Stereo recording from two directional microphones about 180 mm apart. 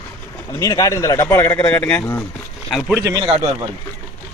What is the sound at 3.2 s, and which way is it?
Speech, 30° right (ahead or behind).